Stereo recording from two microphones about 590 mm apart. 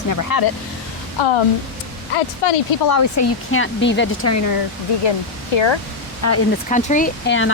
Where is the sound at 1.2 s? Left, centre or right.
Left.